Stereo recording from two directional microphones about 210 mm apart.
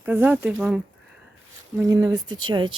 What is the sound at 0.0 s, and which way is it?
Speech, 10° right (ahead or behind).